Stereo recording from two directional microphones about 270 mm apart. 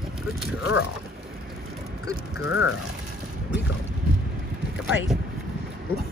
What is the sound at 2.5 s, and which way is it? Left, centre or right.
Speech, left.